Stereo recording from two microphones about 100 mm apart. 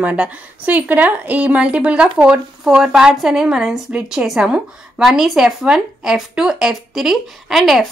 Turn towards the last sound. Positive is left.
turn(degrees=0)  # may be behind; listen again after turning